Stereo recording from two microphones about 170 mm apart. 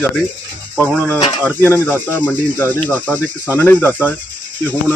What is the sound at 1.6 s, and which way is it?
Speech, 10° left (ahead or behind).